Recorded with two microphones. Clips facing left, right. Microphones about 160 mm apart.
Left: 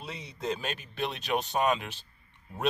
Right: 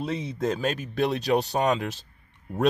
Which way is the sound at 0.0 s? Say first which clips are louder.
Right 9 dB; 50° right (ahead or behind).